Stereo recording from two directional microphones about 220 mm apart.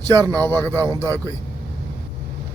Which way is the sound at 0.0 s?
15° right (ahead or behind).